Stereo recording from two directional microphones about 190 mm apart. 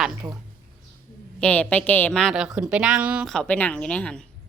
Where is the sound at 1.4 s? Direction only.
5° left (ahead or behind).